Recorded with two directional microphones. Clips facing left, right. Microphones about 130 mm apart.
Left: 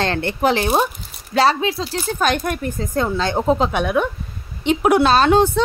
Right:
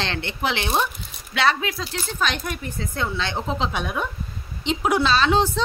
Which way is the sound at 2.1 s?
50° left (ahead or behind).